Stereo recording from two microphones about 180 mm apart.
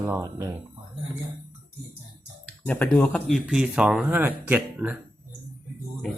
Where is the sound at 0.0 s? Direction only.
15° right (ahead or behind).